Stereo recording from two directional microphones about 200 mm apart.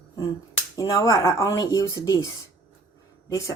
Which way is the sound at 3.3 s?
15° left (ahead or behind).